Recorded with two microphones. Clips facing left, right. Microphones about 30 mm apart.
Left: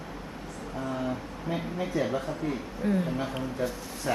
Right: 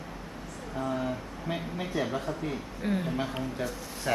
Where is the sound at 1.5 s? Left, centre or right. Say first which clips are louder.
Left 2 dB; right.